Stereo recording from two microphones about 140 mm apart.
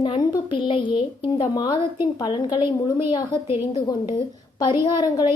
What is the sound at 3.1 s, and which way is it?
Speech, 35° left (ahead or behind).